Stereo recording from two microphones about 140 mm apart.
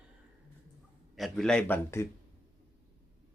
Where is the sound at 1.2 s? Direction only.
5° left (ahead or behind).